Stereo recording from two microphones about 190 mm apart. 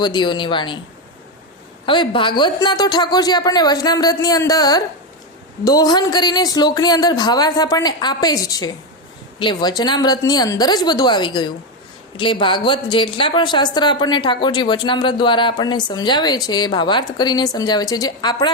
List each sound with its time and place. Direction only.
0.0 s speech: 25° left (ahead or behind)
1.9 s speech: 25° left (ahead or behind)